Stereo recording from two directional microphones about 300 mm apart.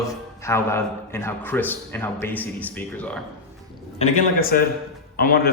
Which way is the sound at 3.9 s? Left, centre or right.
Left.